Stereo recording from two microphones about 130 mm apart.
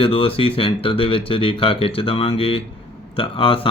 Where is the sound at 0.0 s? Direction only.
45° left (ahead or behind).